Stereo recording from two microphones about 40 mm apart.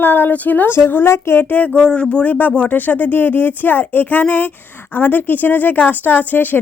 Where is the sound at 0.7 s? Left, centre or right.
Left.